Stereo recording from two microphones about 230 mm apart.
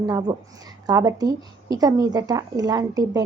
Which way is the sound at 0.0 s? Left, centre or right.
Centre.